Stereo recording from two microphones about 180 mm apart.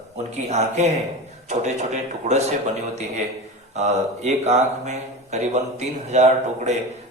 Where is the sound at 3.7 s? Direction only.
40° right (ahead or behind).